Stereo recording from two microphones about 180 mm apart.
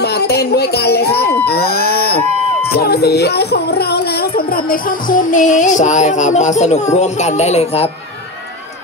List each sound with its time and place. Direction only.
0.0 s music: 65° left (ahead or behind)
1.5 s a sound: 60° left (ahead or behind)
2.7 s speech: 60° left (ahead or behind)
4.6 s music: 45° left (ahead or behind)